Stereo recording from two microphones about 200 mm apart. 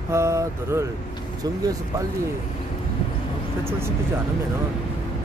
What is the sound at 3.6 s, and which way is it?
Speech, 10° right (ahead or behind).